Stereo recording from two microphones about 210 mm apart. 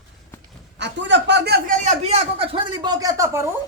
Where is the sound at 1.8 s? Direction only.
30° right (ahead or behind); by 3.4 s 15° right (ahead or behind).